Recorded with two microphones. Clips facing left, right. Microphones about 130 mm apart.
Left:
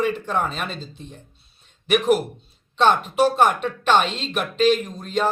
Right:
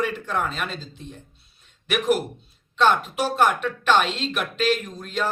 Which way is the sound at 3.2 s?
20° left (ahead or behind).